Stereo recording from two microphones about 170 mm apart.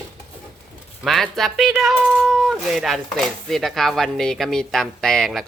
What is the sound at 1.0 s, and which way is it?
Speech, centre (ahead or behind).